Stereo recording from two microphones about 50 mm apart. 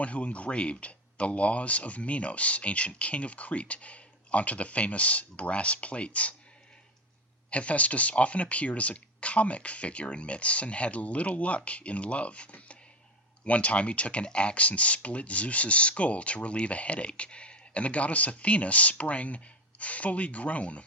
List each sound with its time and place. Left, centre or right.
0.0 s speech: left
7.5 s speech: left